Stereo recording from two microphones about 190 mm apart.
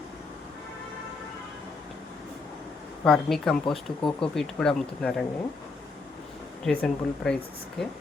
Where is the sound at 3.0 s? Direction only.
Centre (ahead or behind).